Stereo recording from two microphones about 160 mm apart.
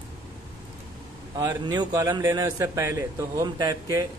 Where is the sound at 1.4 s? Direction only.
25° right (ahead or behind).